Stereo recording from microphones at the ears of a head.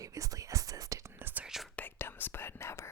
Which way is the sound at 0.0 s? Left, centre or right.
Right.